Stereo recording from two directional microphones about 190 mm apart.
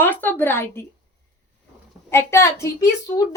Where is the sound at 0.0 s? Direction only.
10° left (ahead or behind).